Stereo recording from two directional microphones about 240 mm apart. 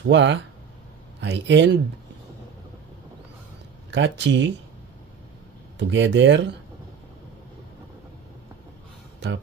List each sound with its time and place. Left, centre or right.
0.0 s speech: right
3.9 s speech: right
5.8 s speech: right